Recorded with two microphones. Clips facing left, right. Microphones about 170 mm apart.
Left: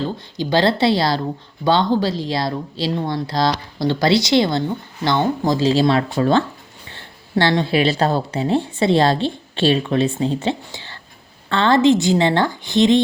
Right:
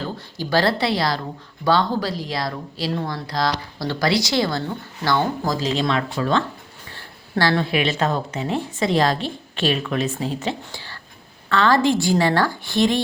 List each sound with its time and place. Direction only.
0.0 s a woman's voice: 20° left (ahead or behind)
6.9 s a woman's voice: 25° left (ahead or behind)